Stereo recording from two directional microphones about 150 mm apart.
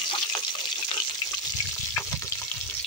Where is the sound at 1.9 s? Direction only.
20° left (ahead or behind).